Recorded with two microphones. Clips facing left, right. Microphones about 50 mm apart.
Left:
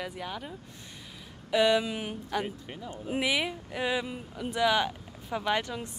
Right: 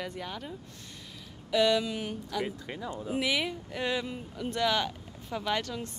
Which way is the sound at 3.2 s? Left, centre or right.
Centre.